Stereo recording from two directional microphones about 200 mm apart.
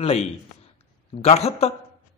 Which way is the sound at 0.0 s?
30° left (ahead or behind).